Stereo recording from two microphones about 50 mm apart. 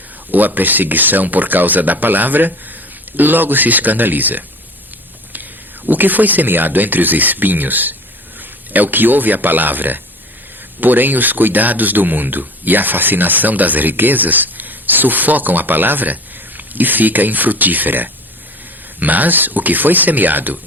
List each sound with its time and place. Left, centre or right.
0.3 s speech: right
5.9 s a man's voice: right